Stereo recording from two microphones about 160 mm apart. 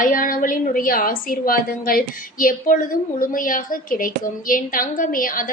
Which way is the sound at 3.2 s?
60° left (ahead or behind).